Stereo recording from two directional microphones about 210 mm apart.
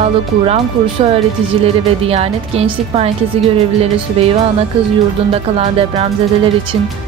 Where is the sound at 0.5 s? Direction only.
30° right (ahead or behind).